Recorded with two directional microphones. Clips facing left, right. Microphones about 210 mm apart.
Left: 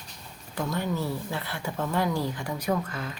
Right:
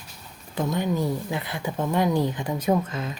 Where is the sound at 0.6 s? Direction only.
20° right (ahead or behind).